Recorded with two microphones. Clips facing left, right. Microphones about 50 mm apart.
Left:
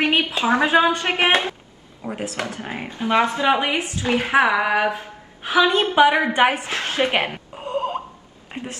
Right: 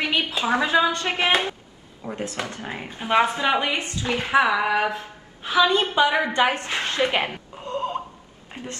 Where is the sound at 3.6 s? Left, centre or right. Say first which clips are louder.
Left 3 dB; centre.